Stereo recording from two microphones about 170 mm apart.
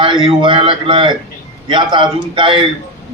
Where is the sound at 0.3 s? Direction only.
30° right (ahead or behind).